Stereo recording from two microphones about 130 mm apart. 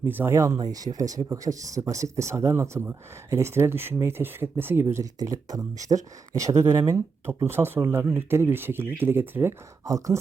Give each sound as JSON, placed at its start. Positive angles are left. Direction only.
{"t": 0.0, "sound": "speech", "side_deg": -15}